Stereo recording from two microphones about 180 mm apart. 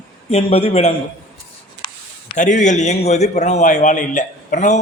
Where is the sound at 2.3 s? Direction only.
45° left (ahead or behind).